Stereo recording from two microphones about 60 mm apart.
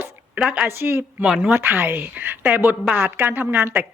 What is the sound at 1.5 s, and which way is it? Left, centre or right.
A woman's voice, right.